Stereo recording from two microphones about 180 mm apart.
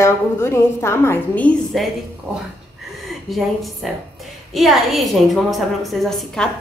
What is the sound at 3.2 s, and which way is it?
A woman's voice, centre (ahead or behind).